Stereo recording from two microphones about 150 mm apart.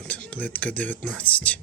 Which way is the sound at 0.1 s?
10° left (ahead or behind).